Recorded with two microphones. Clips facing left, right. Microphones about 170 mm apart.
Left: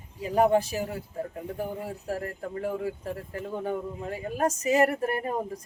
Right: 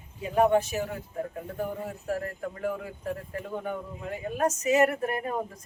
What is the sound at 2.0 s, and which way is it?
Speech, 30° left (ahead or behind).